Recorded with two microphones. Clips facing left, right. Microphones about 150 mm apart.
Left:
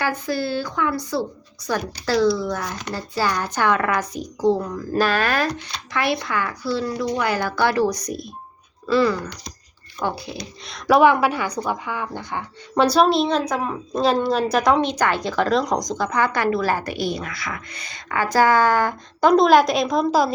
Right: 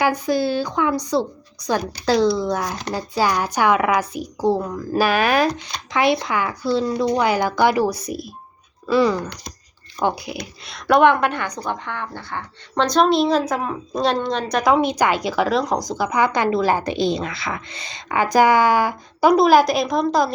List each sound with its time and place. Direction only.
0.0 s a woman's voice: 15° right (ahead or behind)
2.6 s speech: 35° right (ahead or behind)
2.9 s a woman's voice: 15° right (ahead or behind)
8.9 s a woman's voice: 15° right (ahead or behind)
10.4 s speech: centre (ahead or behind)